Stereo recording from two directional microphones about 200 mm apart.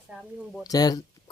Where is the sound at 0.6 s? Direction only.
20° left (ahead or behind).